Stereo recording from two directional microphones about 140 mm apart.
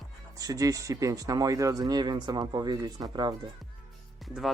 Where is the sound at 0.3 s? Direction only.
25° right (ahead or behind).